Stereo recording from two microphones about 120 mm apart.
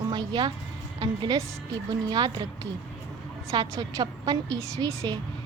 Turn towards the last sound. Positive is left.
turn(degrees=-30)  # may be behind; listen again after turning